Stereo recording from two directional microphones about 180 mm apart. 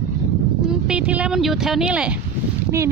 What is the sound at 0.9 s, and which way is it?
Speech, 5° right (ahead or behind).